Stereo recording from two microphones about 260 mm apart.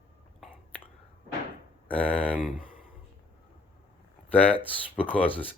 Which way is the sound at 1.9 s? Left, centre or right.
Centre.